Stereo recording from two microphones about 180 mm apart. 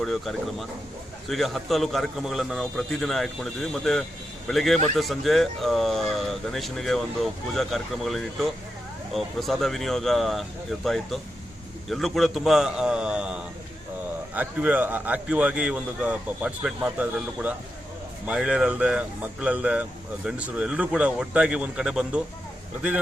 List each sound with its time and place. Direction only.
0.0 s speech: centre (ahead or behind)